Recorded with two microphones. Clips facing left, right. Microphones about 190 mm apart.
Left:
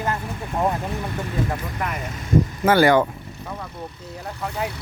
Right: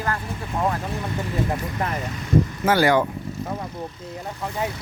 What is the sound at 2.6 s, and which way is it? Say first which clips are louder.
Speech: left 4 dB; 55° left (ahead or behind).